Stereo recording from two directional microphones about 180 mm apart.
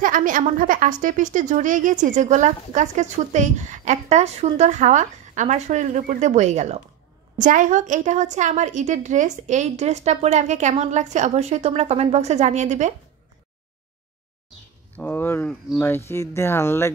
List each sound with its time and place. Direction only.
0.0 s a woman's voice: 50° right (ahead or behind)
15.0 s speech: 10° left (ahead or behind)